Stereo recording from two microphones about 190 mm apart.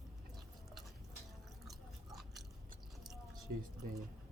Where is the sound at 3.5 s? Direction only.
45° right (ahead or behind).